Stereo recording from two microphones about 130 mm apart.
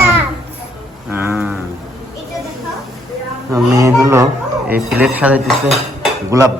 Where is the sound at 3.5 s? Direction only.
25° right (ahead or behind).